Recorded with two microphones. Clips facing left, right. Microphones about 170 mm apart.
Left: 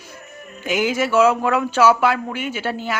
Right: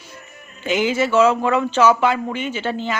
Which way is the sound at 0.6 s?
10° left (ahead or behind).